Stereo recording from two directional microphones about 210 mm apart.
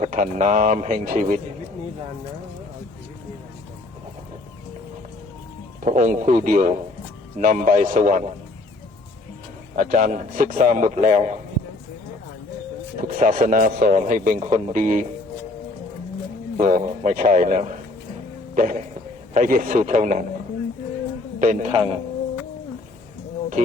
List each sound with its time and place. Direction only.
0.0 s speech: 35° right (ahead or behind)
5.8 s speech: 35° right (ahead or behind)
9.7 s speech: 40° right (ahead or behind)
13.0 s speech: 40° right (ahead or behind)
16.6 s speech: 40° right (ahead or behind)
21.3 s speech: 40° right (ahead or behind)
23.6 s speech: 35° right (ahead or behind)